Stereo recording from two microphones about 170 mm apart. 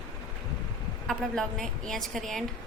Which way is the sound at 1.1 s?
Centre (ahead or behind).